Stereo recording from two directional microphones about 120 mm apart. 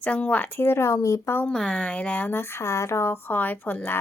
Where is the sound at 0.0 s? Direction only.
10° left (ahead or behind).